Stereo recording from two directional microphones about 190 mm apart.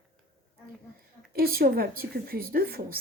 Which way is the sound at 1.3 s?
50° right (ahead or behind).